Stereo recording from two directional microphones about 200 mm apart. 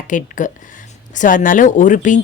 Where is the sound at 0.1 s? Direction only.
40° left (ahead or behind).